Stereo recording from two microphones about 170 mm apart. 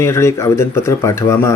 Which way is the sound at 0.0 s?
15° left (ahead or behind).